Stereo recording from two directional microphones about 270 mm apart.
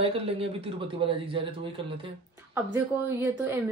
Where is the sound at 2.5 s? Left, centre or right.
Centre.